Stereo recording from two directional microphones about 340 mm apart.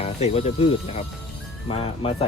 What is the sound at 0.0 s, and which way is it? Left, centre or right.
Speech, centre.